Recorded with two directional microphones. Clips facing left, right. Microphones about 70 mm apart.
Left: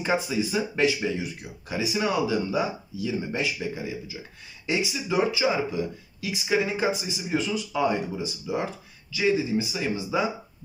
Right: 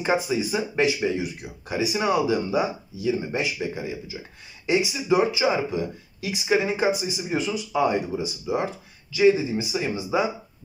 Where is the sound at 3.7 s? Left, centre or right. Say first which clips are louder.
Right 2 dB; right.